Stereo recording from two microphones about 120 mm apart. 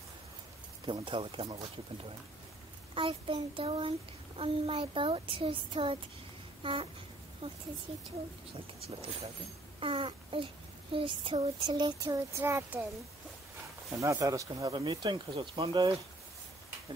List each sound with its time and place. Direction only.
0.8 s speech: 45° right (ahead or behind)
2.9 s a child's voice: 45° right (ahead or behind)
7.4 s speech: 60° right (ahead or behind)
7.9 s speech: 45° right (ahead or behind)
9.8 s speech: 45° right (ahead or behind)
12.0 s speech: 25° right (ahead or behind)
14.0 s speech: 30° right (ahead or behind)
14.7 s speech: 40° right (ahead or behind)